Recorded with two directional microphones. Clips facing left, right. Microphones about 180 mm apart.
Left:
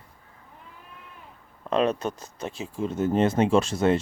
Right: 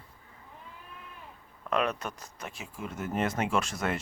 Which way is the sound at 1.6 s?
30° left (ahead or behind).